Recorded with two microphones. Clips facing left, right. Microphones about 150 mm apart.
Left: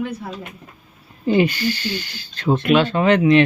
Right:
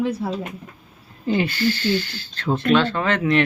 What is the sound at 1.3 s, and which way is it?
Speech, 15° left (ahead or behind).